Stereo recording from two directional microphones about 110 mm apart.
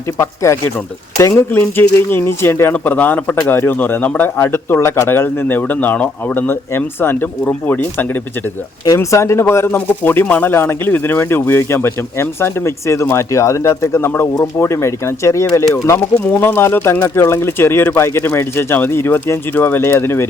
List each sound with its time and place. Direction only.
0.2 s speech: 25° left (ahead or behind)
9.0 s speech: 25° left (ahead or behind)
16.1 s speech: 15° left (ahead or behind)